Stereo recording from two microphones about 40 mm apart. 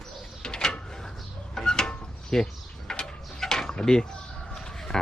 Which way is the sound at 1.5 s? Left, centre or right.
Centre.